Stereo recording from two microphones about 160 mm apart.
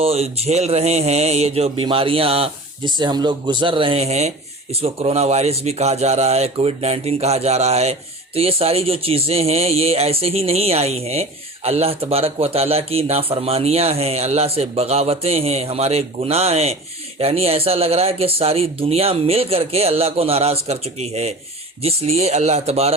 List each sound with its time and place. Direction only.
0.0 s speech: 40° right (ahead or behind)